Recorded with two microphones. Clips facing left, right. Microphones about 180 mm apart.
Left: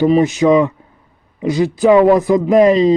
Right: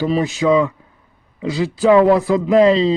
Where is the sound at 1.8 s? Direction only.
15° left (ahead or behind).